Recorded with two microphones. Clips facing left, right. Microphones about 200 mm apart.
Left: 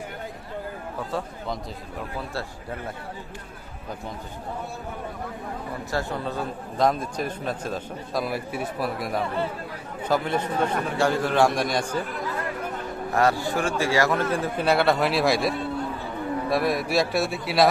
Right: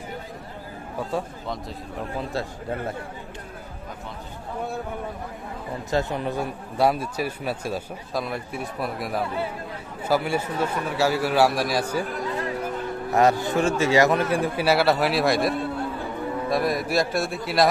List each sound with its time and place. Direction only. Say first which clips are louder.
2.1 s a man's voice: right 4 dB; 20° right (ahead or behind)
5.9 s a man's voice: right 4 dB; 20° right (ahead or behind)
13.1 s a man's voice: right 3 dB; 20° right (ahead or behind); by 17.7 s centre (ahead or behind)